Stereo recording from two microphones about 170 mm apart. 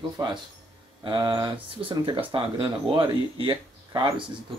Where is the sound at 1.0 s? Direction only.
30° right (ahead or behind).